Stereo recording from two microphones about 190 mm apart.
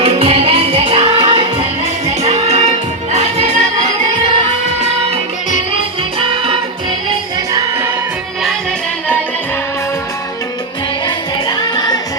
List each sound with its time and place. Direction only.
0.0 s music: 30° right (ahead or behind)
6.1 s music: 30° right (ahead or behind)
7.5 s music: 15° right (ahead or behind)
11.0 s music: 25° left (ahead or behind)